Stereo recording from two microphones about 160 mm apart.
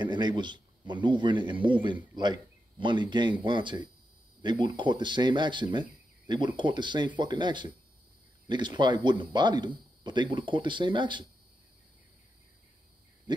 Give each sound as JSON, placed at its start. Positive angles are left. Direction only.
{"t": 0.0, "sound": "speech", "side_deg": -30}